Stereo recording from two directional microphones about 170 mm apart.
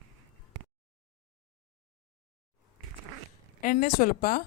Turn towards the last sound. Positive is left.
turn(degrees=55)  # may be behind; listen again after turning